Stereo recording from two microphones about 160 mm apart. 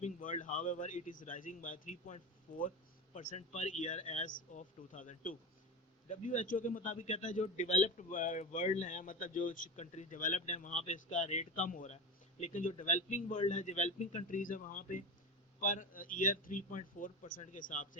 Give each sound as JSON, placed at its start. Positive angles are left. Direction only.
{"t": 0.0, "sound": "a man's voice", "side_deg": 55}